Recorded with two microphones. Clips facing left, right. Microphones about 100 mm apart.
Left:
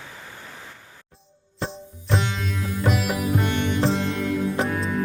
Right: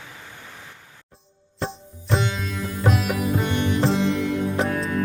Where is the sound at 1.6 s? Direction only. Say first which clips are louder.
Right 1 dB; centre (ahead or behind).